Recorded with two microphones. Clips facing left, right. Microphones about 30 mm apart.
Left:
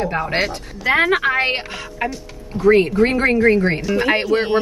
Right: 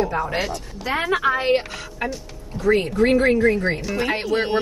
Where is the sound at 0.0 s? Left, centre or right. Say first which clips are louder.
Left 2 dB; left.